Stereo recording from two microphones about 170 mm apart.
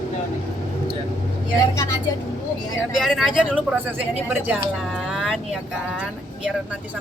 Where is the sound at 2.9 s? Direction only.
Centre (ahead or behind).